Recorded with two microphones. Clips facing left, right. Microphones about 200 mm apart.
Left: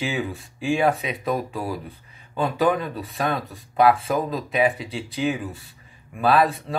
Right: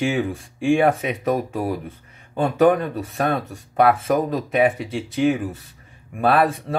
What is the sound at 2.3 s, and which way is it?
Speech, 45° right (ahead or behind).